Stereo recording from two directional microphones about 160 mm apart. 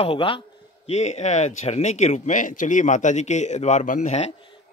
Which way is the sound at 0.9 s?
45° left (ahead or behind).